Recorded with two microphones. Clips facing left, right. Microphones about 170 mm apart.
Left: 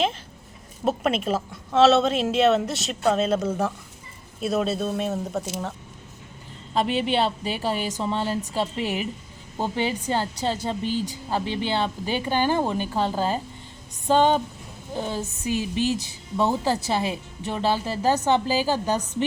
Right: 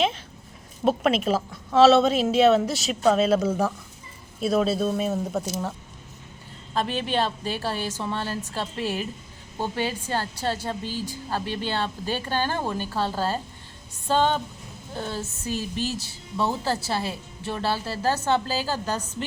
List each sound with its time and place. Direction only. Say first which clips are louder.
0.9 s speech: right 2 dB; centre (ahead or behind)
6.7 s a woman's voice: left 3 dB; 15° left (ahead or behind)